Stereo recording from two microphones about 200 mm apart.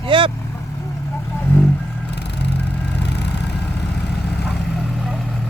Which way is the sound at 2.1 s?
60° left (ahead or behind).